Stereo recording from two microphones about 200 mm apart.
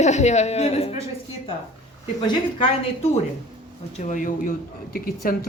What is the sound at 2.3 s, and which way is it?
Speech, 30° left (ahead or behind).